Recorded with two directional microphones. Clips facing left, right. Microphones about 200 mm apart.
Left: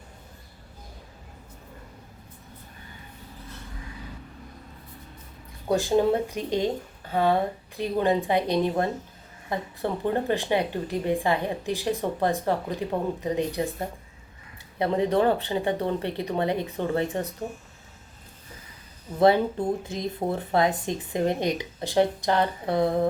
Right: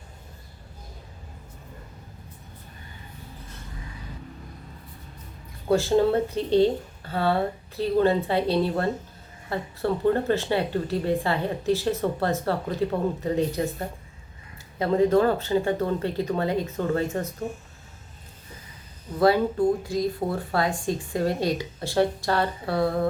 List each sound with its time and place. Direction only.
5.6 s speech: 15° left (ahead or behind)
14.8 s speech: 20° left (ahead or behind)
19.2 s speech: 20° left (ahead or behind)